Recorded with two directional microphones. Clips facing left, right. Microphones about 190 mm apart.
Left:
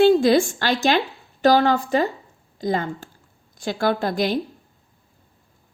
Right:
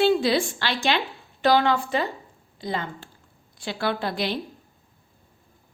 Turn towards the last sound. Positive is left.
turn(degrees=45)  # may be behind; listen again after turning